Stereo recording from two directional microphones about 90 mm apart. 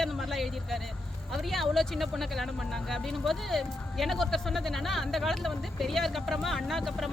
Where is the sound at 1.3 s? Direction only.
Centre (ahead or behind).